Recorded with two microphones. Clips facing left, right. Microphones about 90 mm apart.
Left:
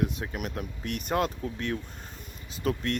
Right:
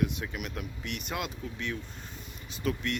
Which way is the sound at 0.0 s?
35° left (ahead or behind).